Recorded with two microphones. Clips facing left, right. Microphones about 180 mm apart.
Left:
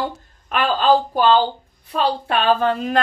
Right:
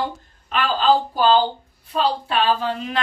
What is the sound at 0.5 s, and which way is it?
A woman's voice, 55° left (ahead or behind).